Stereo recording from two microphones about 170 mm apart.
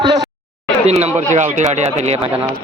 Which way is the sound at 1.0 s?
45° right (ahead or behind).